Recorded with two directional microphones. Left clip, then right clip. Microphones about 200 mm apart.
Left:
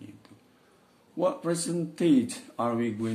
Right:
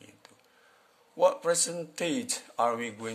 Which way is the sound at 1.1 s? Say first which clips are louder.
Right 3 dB; 45° right (ahead or behind).